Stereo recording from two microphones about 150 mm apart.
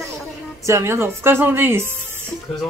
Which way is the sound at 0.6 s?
20° right (ahead or behind).